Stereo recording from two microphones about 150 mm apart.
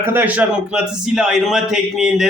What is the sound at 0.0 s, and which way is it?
A man's voice, 15° right (ahead or behind).